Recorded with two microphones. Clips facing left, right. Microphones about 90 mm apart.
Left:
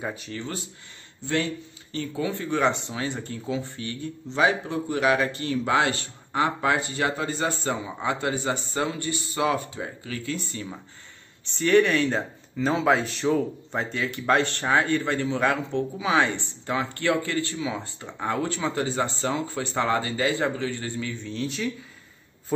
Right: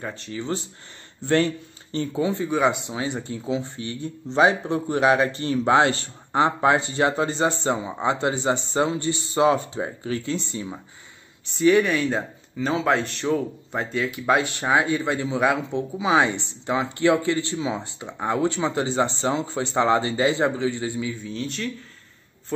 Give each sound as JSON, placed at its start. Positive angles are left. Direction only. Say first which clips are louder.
{"t": 0.0, "sound": "speech", "louder": "left 1 dB", "side_deg": 5}
{"t": 1.2, "sound": "speech", "louder": "right 6 dB", "side_deg": -45}
{"t": 1.9, "sound": "speech", "louder": "right 4 dB", "side_deg": -25}
{"t": 11.5, "sound": "speech", "louder": "right 1 dB", "side_deg": -5}